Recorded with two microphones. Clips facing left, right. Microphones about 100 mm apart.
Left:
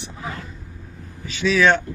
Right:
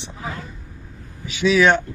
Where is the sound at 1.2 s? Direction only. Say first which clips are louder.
Right 2 dB; 15° right (ahead or behind).